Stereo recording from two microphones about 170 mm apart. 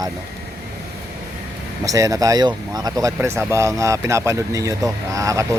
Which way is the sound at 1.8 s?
20° right (ahead or behind).